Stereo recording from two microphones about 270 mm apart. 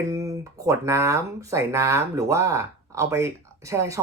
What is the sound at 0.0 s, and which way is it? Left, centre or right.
Speech, centre.